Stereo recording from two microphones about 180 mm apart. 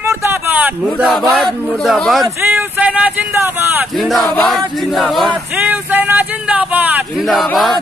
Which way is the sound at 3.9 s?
Centre (ahead or behind).